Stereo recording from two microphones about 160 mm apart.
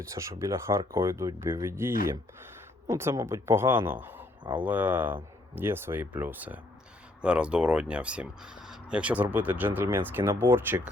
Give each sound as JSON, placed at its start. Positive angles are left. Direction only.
{"t": 0.0, "sound": "speech", "side_deg": -20}